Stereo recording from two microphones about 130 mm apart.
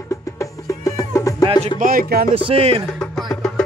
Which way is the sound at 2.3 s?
50° right (ahead or behind).